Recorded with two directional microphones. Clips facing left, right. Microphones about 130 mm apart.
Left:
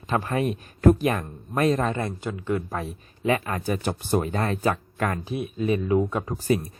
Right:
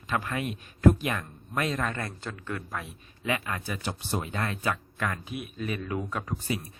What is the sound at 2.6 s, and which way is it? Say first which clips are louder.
Speech: left 6 dB; 35° left (ahead or behind).